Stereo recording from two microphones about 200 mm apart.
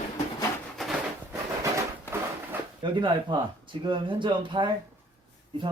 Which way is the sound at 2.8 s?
25° right (ahead or behind).